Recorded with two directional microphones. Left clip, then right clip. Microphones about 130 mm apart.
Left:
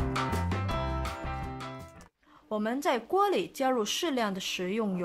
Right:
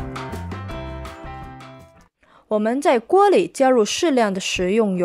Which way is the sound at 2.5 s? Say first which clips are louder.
Right 12 dB; 40° right (ahead or behind).